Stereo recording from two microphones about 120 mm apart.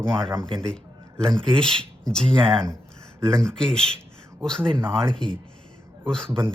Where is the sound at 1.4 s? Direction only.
5° left (ahead or behind).